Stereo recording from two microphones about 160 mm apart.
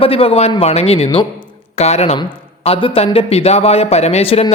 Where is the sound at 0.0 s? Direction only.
35° left (ahead or behind).